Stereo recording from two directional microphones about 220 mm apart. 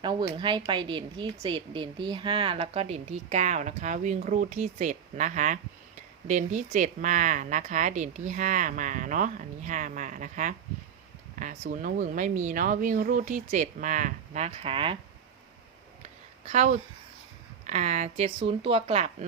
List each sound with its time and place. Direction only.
0.0 s a woman's voice: 20° right (ahead or behind)
16.0 s a sound: 30° right (ahead or behind)
17.7 s a woman's voice: 30° right (ahead or behind)